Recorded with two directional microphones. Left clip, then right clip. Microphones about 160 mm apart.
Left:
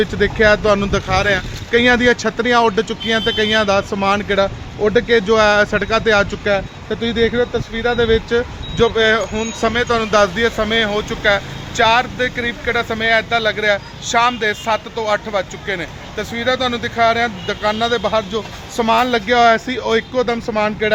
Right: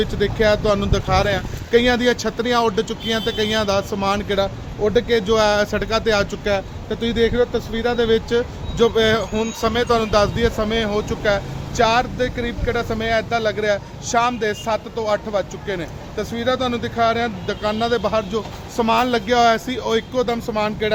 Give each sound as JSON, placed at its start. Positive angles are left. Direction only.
{"t": 0.0, "sound": "speech", "side_deg": 45}